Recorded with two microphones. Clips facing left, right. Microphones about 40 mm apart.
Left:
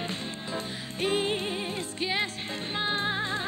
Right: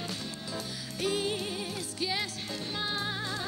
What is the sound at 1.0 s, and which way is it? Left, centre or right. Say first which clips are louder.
Music: left 4 dB; left.